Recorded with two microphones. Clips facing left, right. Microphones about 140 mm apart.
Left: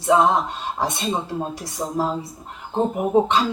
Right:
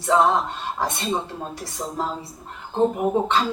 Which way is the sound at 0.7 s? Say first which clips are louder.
Left 2 dB; 15° left (ahead or behind).